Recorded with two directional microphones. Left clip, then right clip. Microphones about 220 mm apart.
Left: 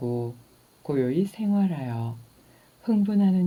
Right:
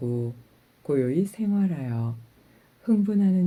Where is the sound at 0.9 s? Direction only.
10° right (ahead or behind).